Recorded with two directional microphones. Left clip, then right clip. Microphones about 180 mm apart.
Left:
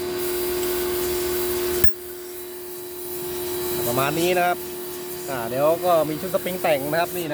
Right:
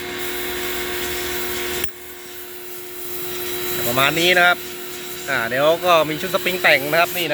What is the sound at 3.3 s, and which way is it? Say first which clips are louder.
Helicopter: right 1 dB; 60° left (ahead or behind).